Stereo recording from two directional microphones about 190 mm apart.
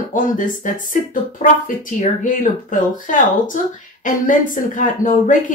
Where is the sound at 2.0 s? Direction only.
45° left (ahead or behind).